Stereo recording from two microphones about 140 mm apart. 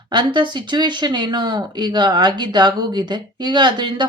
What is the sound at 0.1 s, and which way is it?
Speech, 35° right (ahead or behind).